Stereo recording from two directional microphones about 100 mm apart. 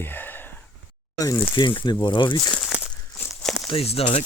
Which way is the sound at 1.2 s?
35° left (ahead or behind).